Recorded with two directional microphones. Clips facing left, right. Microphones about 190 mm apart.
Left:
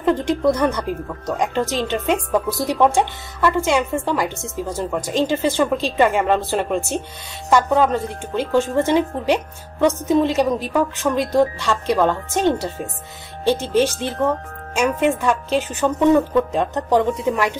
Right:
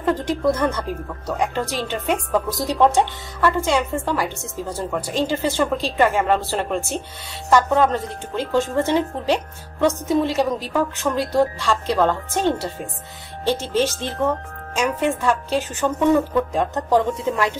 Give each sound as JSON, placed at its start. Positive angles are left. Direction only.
{"t": 0.0, "sound": "a woman's voice", "side_deg": 20}